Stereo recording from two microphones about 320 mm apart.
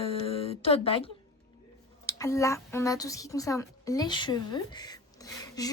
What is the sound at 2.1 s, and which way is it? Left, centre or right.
Speech, centre.